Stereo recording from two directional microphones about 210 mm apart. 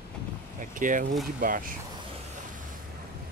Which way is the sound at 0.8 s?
40° right (ahead or behind).